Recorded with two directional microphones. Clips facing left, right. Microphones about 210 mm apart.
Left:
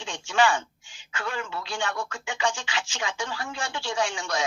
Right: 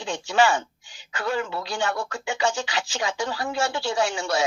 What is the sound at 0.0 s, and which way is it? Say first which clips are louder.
A woman's voice: right 3 dB; 40° right (ahead or behind).